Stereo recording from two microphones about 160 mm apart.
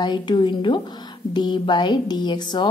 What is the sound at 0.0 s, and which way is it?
Speech, 25° left (ahead or behind).